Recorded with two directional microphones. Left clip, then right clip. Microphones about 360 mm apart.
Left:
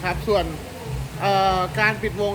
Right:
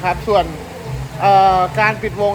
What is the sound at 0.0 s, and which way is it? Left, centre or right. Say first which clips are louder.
Speech: right 7 dB; centre.